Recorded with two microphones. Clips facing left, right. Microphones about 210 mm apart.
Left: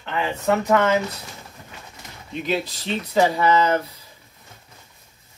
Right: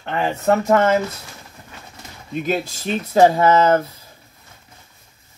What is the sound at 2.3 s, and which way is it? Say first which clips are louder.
Speech: right 3 dB; 45° right (ahead or behind).